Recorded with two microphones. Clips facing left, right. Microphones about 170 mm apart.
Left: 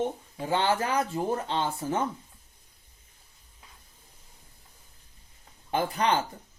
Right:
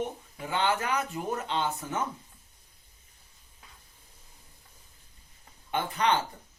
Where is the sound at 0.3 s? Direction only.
30° left (ahead or behind).